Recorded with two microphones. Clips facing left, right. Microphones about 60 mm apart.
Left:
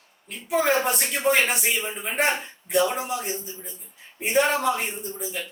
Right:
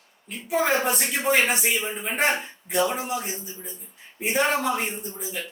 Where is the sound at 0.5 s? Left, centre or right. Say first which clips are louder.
Left 1 dB; centre.